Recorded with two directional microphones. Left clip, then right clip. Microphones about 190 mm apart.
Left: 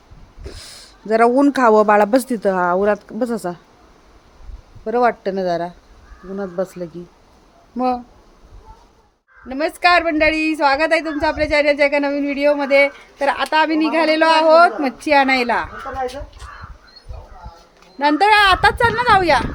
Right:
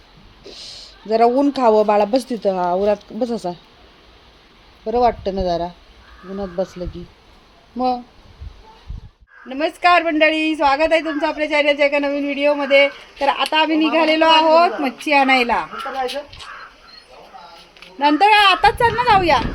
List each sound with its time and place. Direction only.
0.4 s speech: 15° left (ahead or behind)
4.9 s a woman's voice: 5° left (ahead or behind)
7.8 s a woman's voice: 5° left (ahead or behind)
9.5 s a woman's voice: centre (ahead or behind)
18.0 s a woman's voice: centre (ahead or behind)